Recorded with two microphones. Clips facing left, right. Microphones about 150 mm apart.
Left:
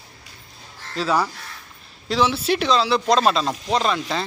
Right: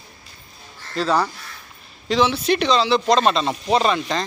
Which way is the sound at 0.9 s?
5° left (ahead or behind).